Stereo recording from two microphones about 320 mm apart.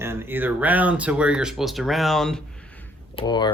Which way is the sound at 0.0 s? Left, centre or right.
Centre.